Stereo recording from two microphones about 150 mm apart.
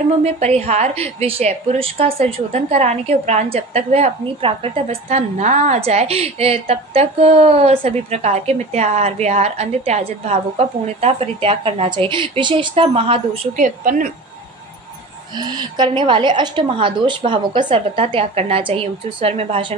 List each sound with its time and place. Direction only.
0.2 s a woman's voice: 45° right (ahead or behind)
13.6 s a woman's voice: 60° right (ahead or behind)
15.3 s a woman's voice: 30° right (ahead or behind)